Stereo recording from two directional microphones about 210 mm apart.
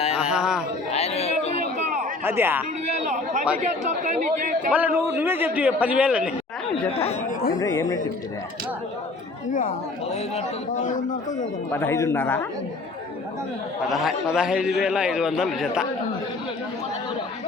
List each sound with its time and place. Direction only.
0.2 s a sound: 5° right (ahead or behind)
0.9 s chatter: 30° left (ahead or behind)
2.2 s a man's voice: 10° right (ahead or behind)
2.9 s a sound: 35° right (ahead or behind)
3.6 s speech: 35° right (ahead or behind)
4.7 s a man's voice: 10° right (ahead or behind)
6.9 s speech: 30° left (ahead or behind)
7.6 s speech: 15° left (ahead or behind)
9.5 s speech: 40° left (ahead or behind)
11.7 s speech: 10° left (ahead or behind)
13.8 s a man's voice: centre (ahead or behind)